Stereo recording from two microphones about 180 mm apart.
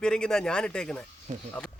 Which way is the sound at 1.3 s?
40° right (ahead or behind).